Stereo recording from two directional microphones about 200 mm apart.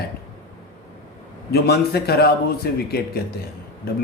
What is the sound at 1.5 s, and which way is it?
Speech, 50° left (ahead or behind).